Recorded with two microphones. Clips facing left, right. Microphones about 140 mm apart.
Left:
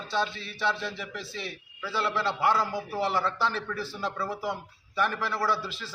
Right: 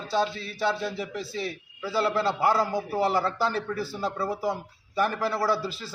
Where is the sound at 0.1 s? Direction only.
40° right (ahead or behind).